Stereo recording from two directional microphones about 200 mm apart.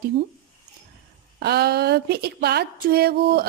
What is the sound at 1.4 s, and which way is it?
Speech, 55° right (ahead or behind).